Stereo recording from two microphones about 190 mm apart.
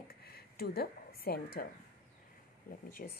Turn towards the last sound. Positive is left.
turn(degrees=50)  # may be behind; listen again after turning